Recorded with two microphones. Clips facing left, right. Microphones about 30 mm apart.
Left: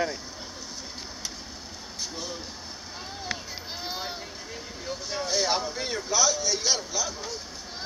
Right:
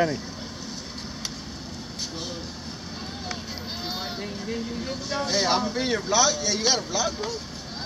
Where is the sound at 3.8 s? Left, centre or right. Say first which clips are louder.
Right 3 dB; centre.